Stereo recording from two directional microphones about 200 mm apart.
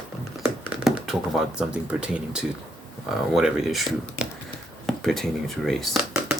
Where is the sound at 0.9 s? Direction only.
Centre (ahead or behind).